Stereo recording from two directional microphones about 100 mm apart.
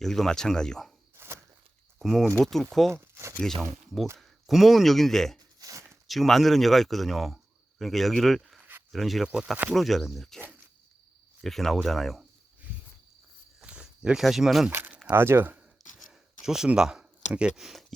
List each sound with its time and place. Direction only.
0.0 s speech: 5° left (ahead or behind)
1.1 s walk: 25° right (ahead or behind)
2.0 s speech: centre (ahead or behind)
2.9 s speech: 25° right (ahead or behind)
4.2 s speech: centre (ahead or behind)
5.4 s a sound: 35° right (ahead or behind)
6.1 s speech: centre (ahead or behind)
9.7 s speech: centre (ahead or behind)
11.4 s speech: centre (ahead or behind)
13.6 s a sound: 10° right (ahead or behind)
14.7 s speech: 20° right (ahead or behind)
16.0 s a sound: 5° right (ahead or behind)